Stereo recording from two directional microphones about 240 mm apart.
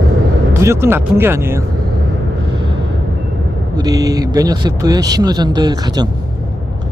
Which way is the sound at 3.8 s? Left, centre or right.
Centre.